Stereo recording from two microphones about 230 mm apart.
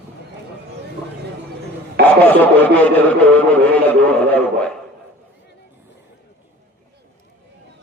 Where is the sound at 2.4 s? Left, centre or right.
Centre.